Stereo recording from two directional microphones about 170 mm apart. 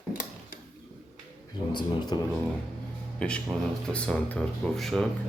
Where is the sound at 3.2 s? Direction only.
5° left (ahead or behind).